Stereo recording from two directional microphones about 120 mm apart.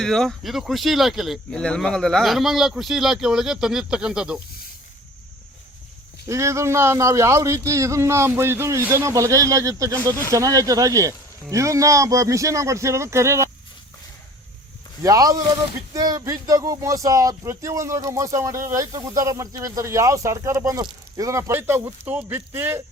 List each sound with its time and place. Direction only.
0.0 s speech: 5° left (ahead or behind)
6.2 s speech: 25° right (ahead or behind)
15.0 s speech: 30° right (ahead or behind)